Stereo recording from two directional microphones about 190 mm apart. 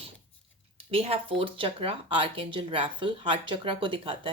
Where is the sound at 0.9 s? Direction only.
30° right (ahead or behind).